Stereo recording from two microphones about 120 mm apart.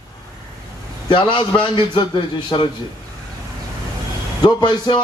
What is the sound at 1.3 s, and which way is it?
Speech, 40° left (ahead or behind).